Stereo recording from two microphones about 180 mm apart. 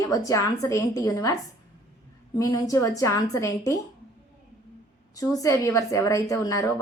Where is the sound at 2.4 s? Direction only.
20° left (ahead or behind).